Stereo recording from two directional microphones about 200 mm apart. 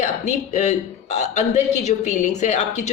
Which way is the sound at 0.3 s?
35° left (ahead or behind).